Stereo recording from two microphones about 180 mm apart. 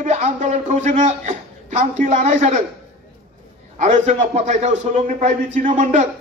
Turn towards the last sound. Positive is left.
turn(degrees=-45)  # may be behind; listen again after turning